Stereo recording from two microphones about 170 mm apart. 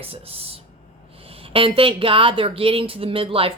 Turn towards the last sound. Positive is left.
turn(degrees=-35)  # may be behind; listen again after turning